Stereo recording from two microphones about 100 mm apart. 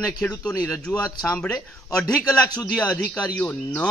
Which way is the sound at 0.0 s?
5° left (ahead or behind).